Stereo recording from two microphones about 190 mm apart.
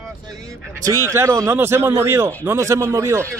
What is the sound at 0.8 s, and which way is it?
Speech, 15° right (ahead or behind).